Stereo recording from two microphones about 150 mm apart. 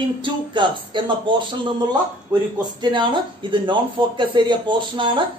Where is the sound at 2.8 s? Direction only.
30° right (ahead or behind).